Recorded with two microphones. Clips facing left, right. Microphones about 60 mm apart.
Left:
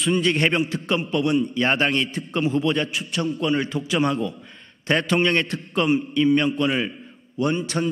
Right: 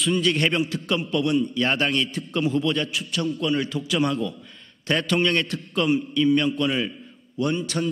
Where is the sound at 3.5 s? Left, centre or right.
Left.